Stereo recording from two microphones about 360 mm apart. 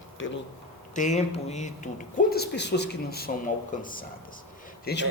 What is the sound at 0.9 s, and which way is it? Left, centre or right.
A man's voice, centre.